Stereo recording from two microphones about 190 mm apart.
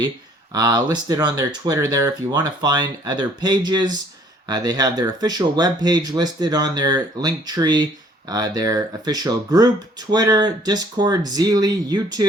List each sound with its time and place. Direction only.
0.5 s speech: 20° right (ahead or behind)